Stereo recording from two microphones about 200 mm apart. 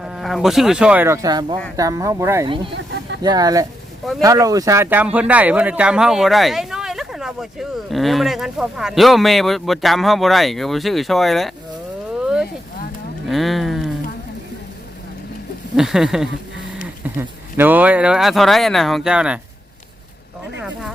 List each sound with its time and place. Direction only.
0.0 s speech: centre (ahead or behind)
2.7 s a sound: 60° right (ahead or behind)
3.2 s speech: 20° right (ahead or behind); by 11.5 s centre (ahead or behind)
13.2 s speech: centre (ahead or behind)
15.7 s speech: centre (ahead or behind)